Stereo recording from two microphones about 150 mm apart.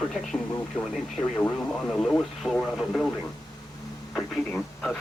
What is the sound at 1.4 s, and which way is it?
Speech, 5° left (ahead or behind).